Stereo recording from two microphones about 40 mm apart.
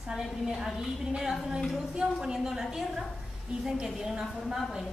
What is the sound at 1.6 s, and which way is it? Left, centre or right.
Speech, centre.